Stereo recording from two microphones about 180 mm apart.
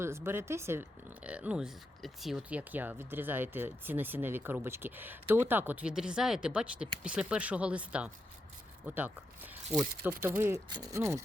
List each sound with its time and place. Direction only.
0.0 s speech: 15° right (ahead or behind)